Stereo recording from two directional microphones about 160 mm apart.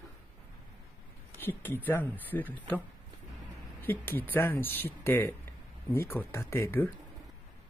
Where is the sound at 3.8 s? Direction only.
15° left (ahead or behind).